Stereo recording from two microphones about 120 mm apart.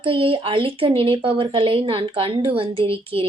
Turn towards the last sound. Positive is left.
turn(degrees=-50)  # may be behind; listen again after turning